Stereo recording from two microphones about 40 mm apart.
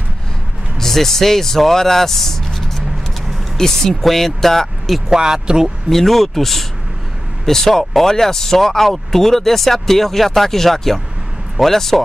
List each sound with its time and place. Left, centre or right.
0.7 s speech: centre
5.1 s speech: centre
5.9 s speech: centre